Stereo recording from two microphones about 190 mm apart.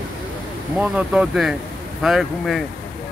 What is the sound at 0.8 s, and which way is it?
Speech, 5° right (ahead or behind).